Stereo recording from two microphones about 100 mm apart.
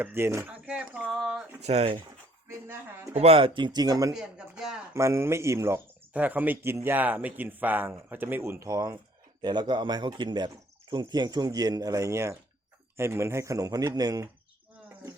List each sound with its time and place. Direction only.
0.0 s speech: 25° right (ahead or behind)
0.5 s speech: 10° right (ahead or behind)
1.6 s speech: 85° right
2.5 s speech: 25° right (ahead or behind)
3.2 s speech: 75° right (ahead or behind); by 4.1 s 40° right (ahead or behind)
4.1 s speech: 5° right (ahead or behind)
4.9 s speech: 30° right (ahead or behind)
6.1 s speech: 15° right (ahead or behind); by 9.0 s 35° right (ahead or behind)
9.4 s speech: 50° right (ahead or behind)